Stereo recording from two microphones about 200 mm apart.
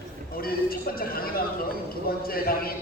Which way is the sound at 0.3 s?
45° left (ahead or behind).